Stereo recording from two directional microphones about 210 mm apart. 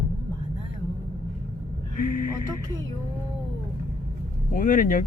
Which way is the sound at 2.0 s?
40° left (ahead or behind).